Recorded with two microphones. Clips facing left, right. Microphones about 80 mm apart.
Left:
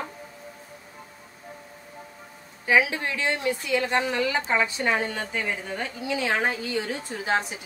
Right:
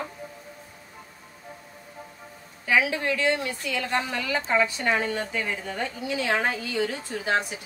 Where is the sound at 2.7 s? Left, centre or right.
Left.